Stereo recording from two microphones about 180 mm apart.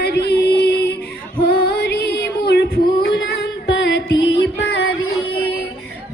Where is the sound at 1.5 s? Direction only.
65° left (ahead or behind).